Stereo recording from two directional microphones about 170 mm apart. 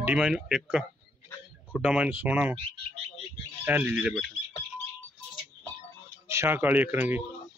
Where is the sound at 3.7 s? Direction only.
10° right (ahead or behind).